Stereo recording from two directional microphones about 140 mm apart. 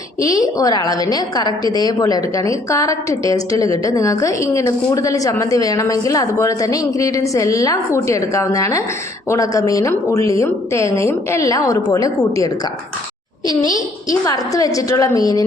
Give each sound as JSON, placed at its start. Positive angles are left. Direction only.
{"t": 0.2, "sound": "a woman's voice", "side_deg": 25}
{"t": 14.1, "sound": "a woman's voice", "side_deg": 25}